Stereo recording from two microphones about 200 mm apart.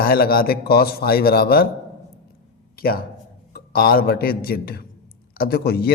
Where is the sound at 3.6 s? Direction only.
50° left (ahead or behind).